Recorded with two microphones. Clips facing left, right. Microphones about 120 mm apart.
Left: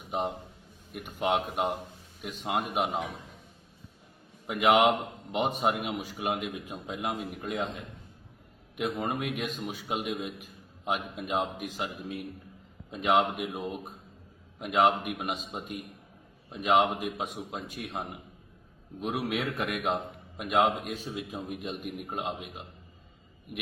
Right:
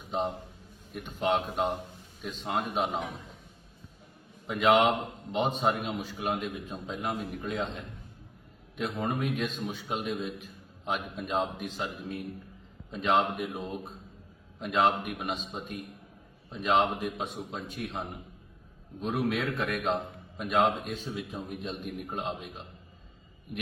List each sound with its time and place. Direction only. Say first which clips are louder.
0.1 s a man's voice: even; 10° left (ahead or behind)
4.4 s a man's voice: left 1 dB; 10° left (ahead or behind)